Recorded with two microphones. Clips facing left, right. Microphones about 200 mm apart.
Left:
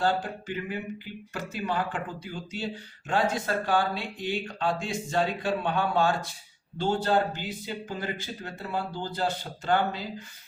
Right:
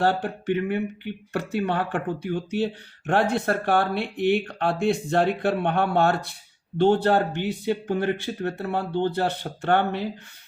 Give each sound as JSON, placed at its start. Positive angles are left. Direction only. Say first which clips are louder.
{"t": 0.0, "sound": "speech", "louder": "right 4 dB", "side_deg": -65}